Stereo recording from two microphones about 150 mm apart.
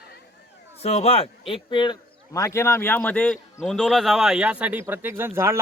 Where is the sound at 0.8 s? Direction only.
45° left (ahead or behind).